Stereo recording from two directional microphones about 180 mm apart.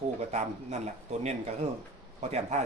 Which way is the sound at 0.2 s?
40° right (ahead or behind).